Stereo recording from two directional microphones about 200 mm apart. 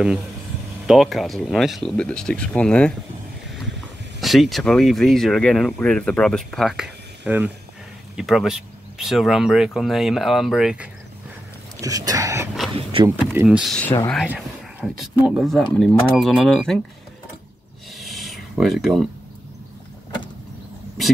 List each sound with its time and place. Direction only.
0.8 s speech: centre (ahead or behind)
4.2 s speech: centre (ahead or behind)
11.8 s speech: 15° right (ahead or behind)
12.7 s speech: 25° right (ahead or behind)
13.1 s speech: 10° right (ahead or behind)
17.9 s a sound: centre (ahead or behind)